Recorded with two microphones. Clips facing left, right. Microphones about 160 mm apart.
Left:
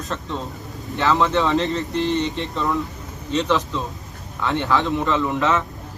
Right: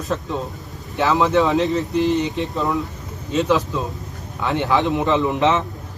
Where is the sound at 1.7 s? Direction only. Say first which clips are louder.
Right 3 dB; 10° right (ahead or behind).